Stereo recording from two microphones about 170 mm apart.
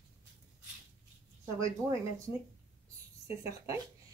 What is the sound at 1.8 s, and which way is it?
Speech, 20° right (ahead or behind).